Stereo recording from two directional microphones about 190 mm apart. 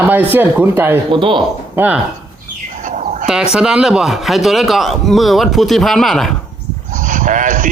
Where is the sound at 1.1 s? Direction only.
25° right (ahead or behind).